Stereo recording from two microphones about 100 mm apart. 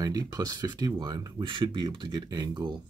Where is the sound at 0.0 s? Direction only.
40° right (ahead or behind).